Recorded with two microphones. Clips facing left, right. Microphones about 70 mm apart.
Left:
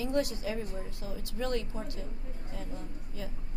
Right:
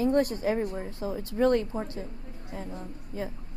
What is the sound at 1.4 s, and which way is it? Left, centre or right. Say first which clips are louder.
A woman's voice: right 10 dB; right.